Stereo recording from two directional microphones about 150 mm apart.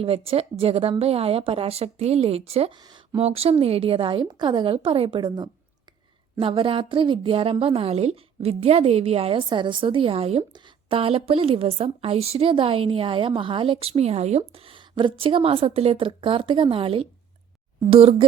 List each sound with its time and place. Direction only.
0.0 s speech: 40° right (ahead or behind)
2.7 s speech: 30° right (ahead or behind)
3.2 s speech: 40° right (ahead or behind)